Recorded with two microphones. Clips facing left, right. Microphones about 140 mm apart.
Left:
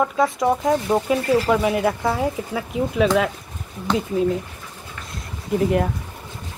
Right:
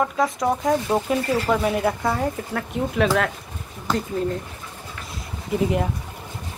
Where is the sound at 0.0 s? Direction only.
Centre (ahead or behind).